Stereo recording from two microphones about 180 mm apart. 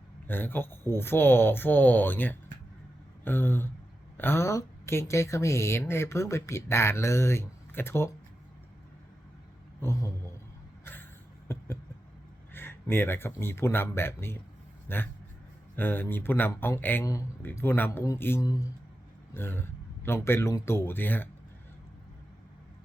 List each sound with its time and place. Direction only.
0.3 s speech: 10° left (ahead or behind)
9.8 s speech: 15° left (ahead or behind)
12.5 s a man's voice: 15° left (ahead or behind)